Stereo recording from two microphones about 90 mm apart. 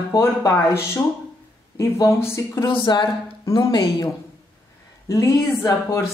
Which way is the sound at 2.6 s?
70° left (ahead or behind).